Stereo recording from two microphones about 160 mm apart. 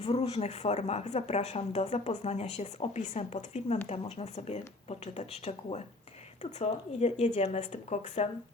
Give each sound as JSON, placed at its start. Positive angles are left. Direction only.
{"t": 0.0, "sound": "a woman's voice", "side_deg": 40}